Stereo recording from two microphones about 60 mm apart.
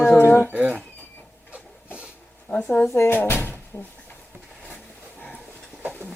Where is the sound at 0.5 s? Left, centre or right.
Right.